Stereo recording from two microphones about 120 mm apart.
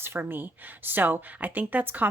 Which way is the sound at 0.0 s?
15° right (ahead or behind).